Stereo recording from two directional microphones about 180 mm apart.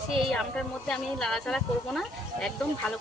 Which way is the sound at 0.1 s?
Centre (ahead or behind).